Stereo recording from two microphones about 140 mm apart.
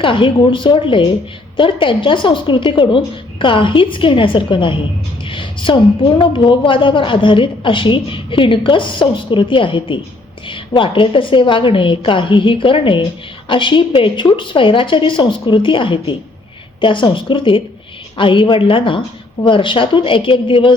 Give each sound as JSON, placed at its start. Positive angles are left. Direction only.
{"t": 0.0, "sound": "a woman's voice", "side_deg": 35}